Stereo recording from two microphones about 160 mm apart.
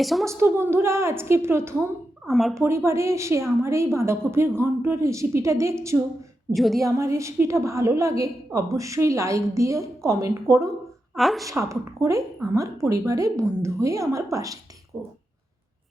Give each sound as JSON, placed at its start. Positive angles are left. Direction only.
{"t": 0.0, "sound": "a woman's voice", "side_deg": 0}
{"t": 0.3, "sound": "a woman's voice", "side_deg": -15}
{"t": 2.3, "sound": "a woman's voice", "side_deg": 0}
{"t": 2.6, "sound": "a woman's voice", "side_deg": -15}
{"t": 6.5, "sound": "a woman's voice", "side_deg": 0}
{"t": 6.8, "sound": "a woman's voice", "side_deg": -20}
{"t": 11.1, "sound": "a woman's voice", "side_deg": 0}
{"t": 11.4, "sound": "a woman's voice", "side_deg": -20}